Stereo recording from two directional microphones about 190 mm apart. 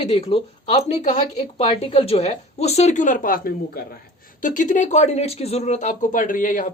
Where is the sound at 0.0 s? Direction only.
30° left (ahead or behind).